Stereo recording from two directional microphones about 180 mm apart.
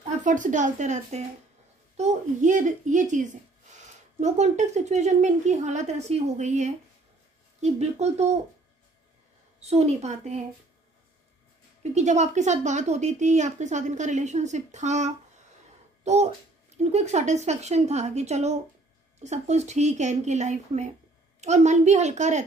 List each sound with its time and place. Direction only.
0.0 s a woman's voice: 45° right (ahead or behind)
9.6 s speech: 35° right (ahead or behind)
11.8 s a child's voice: 40° right (ahead or behind)